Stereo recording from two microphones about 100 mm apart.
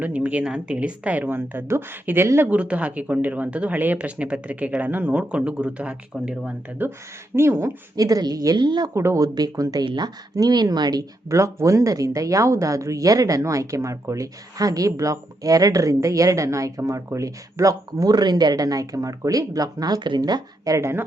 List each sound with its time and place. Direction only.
0.0 s speech: 15° right (ahead or behind)
2.5 s speech: 15° right (ahead or behind)
7.3 s speech: 25° right (ahead or behind)
7.9 s speech: 40° right (ahead or behind)
9.0 s speech: 30° right (ahead or behind)